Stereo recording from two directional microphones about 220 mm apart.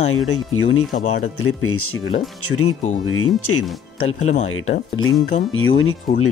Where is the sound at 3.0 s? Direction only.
75° left (ahead or behind).